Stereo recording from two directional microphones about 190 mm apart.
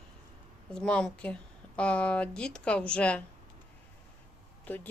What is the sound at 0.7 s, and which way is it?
Speech, 5° left (ahead or behind).